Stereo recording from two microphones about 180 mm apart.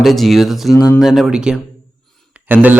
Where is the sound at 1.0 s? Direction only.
Centre (ahead or behind).